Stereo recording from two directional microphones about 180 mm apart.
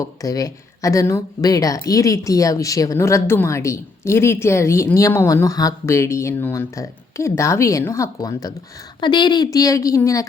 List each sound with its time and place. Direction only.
0.0 s a woman's voice: 20° left (ahead or behind)